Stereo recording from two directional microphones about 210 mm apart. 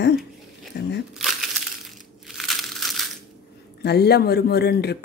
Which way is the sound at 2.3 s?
Centre (ahead or behind).